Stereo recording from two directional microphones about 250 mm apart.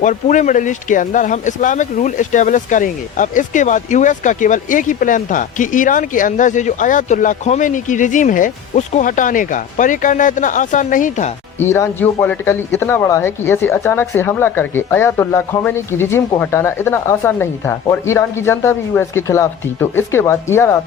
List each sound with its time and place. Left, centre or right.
0.0 s speech: left
11.6 s a man's voice: centre